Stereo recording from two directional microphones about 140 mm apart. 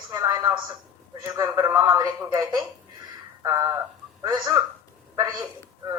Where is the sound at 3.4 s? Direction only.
20° right (ahead or behind).